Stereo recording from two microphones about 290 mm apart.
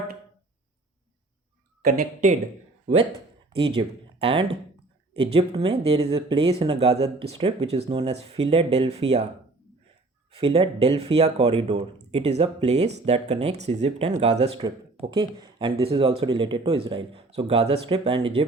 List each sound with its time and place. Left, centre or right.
1.8 s speech: right
10.3 s speech: centre